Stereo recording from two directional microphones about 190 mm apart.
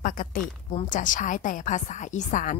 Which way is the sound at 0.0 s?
45° left (ahead or behind).